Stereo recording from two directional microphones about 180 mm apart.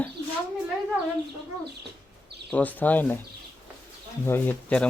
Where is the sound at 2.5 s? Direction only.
10° left (ahead or behind).